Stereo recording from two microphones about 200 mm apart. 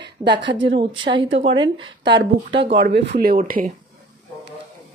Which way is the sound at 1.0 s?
25° right (ahead or behind).